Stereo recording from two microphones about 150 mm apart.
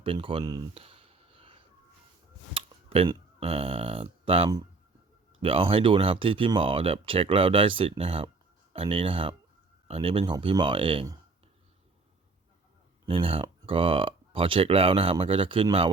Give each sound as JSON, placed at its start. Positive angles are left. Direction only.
{"t": 0.0, "sound": "speech", "side_deg": -35}
{"t": 0.7, "sound": "a sound", "side_deg": -40}
{"t": 3.4, "sound": "speech", "side_deg": -40}
{"t": 13.1, "sound": "speech", "side_deg": -40}